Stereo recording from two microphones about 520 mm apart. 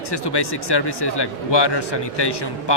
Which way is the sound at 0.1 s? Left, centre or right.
Left.